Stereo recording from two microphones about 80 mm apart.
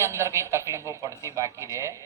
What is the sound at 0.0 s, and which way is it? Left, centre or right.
A woman's voice, right.